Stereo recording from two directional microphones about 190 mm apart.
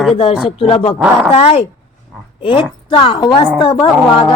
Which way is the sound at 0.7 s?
30° left (ahead or behind).